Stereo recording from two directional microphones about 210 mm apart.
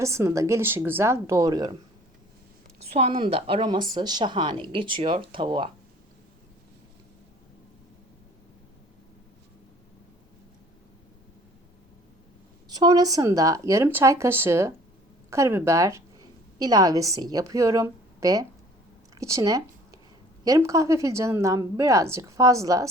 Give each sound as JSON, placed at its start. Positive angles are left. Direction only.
{"t": 0.0, "sound": "speech", "side_deg": -15}
{"t": 2.9, "sound": "a woman's voice", "side_deg": -30}
{"t": 12.6, "sound": "speech", "side_deg": -20}